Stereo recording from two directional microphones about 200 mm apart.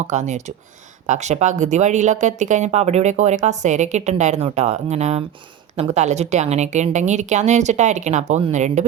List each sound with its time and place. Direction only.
0.0 s speech: 35° right (ahead or behind)